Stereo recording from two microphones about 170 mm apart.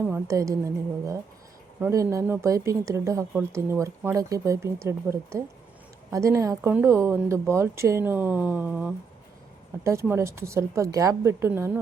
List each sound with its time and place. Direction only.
0.0 s speech: 15° right (ahead or behind)